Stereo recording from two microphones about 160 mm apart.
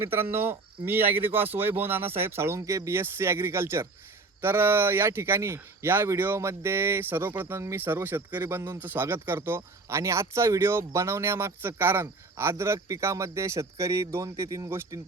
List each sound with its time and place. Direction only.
0.1 s speech: 15° right (ahead or behind)